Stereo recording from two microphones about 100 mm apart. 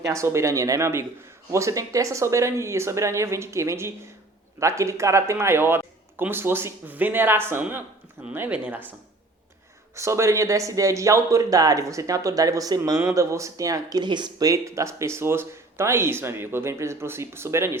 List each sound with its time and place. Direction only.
0.0 s speech: 30° right (ahead or behind); by 8.8 s 15° right (ahead or behind)
9.9 s a man's voice: 30° right (ahead or behind)
14.0 s speech: 50° right (ahead or behind); by 17.7 s 25° right (ahead or behind)